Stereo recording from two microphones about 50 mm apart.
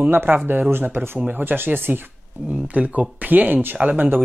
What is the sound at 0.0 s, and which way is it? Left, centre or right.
Speech, right.